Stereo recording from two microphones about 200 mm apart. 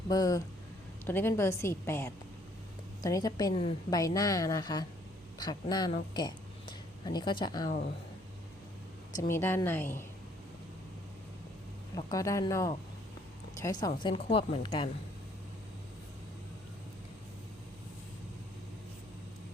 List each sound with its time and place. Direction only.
0.1 s a woman's voice: 15° left (ahead or behind)
9.1 s a woman's voice: 10° left (ahead or behind)
11.9 s a woman's voice: 15° left (ahead or behind)